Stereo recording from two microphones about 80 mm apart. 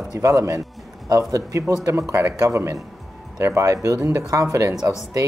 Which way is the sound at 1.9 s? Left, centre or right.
Right.